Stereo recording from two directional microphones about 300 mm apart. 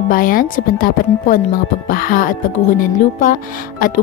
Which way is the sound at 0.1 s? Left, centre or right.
Left.